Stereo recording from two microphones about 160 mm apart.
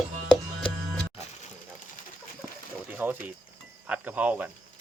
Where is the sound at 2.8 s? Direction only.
10° right (ahead or behind).